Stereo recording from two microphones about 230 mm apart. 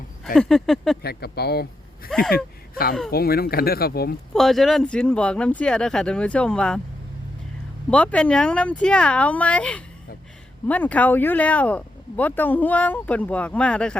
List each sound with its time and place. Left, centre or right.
0.3 s speech: centre
1.0 s speech: left
4.4 s speech: centre
7.9 s speech: centre